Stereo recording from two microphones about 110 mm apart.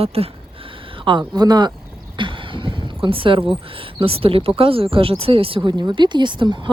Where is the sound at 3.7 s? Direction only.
55° right (ahead or behind).